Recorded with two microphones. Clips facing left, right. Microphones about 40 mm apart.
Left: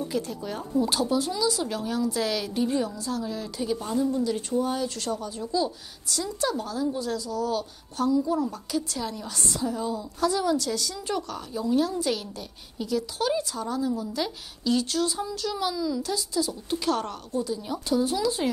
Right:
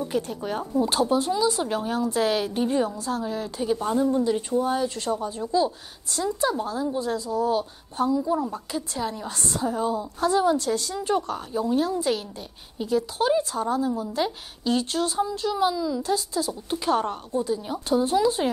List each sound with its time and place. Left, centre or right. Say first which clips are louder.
0.1 s a woman's voice: right 3 dB; right
4.4 s a woman's voice: right 3 dB; centre
9.6 s a woman's voice: right 5 dB; right
16.1 s a woman's voice: right 2 dB; right
16.7 s a woman's voice: right 3 dB; centre